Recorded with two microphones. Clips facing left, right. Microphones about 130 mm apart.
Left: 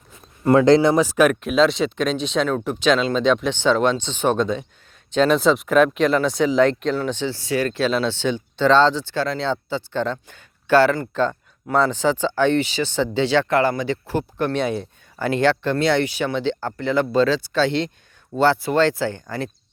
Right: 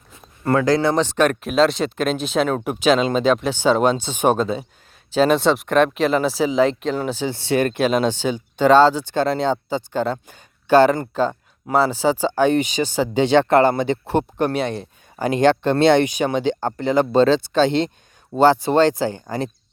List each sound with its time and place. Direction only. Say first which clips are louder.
0.4 s speech: left 4 dB; 20° left (ahead or behind)
0.9 s speech: left 1 dB; 5° left (ahead or behind); by 7.3 s 10° right (ahead or behind)
7.3 s speech: right 3 dB; 25° right (ahead or behind)
9.1 s speech: right 4 dB; 20° right (ahead or behind)
9.7 s speech: right 2 dB; 10° right (ahead or behind)